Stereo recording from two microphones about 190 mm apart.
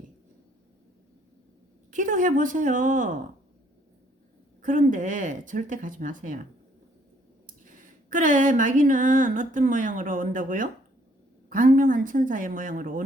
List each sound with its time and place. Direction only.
1.9 s speech: 45° right (ahead or behind)
4.6 s speech: 45° right (ahead or behind)
7.4 s a sound: 45° right (ahead or behind)
11.4 s speech: 45° right (ahead or behind)